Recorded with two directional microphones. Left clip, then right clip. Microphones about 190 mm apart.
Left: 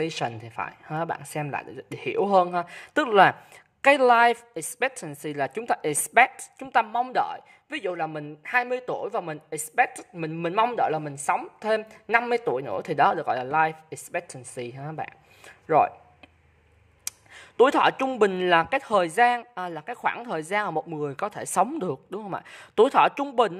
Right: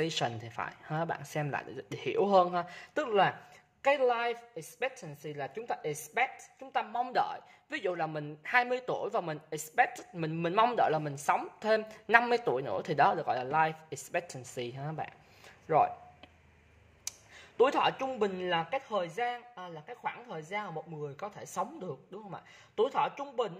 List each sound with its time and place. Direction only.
0.0 s a woman's voice: 15° left (ahead or behind)
17.0 s a sound: 25° left (ahead or behind)
17.9 s speech: 40° left (ahead or behind)